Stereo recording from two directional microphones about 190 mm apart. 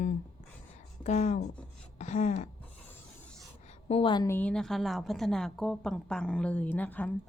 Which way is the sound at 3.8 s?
30° left (ahead or behind).